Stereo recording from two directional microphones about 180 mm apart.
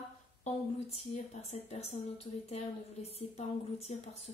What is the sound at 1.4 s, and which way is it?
A woman's voice, 35° left (ahead or behind).